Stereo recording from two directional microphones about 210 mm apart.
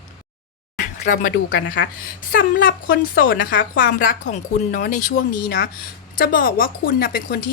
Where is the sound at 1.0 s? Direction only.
40° left (ahead or behind).